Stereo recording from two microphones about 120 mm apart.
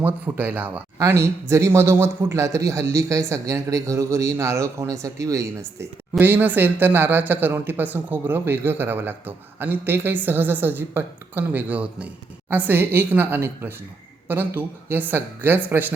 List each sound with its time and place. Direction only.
0.0 s a man's voice: 15° right (ahead or behind)
6.1 s speech: 15° right (ahead or behind)